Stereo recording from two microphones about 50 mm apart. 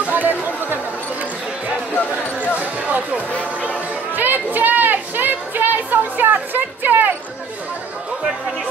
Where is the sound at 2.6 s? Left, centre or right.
Right.